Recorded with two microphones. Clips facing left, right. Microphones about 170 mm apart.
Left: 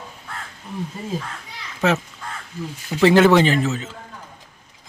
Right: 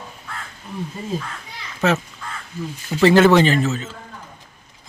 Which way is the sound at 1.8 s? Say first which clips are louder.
Even; 15° left (ahead or behind).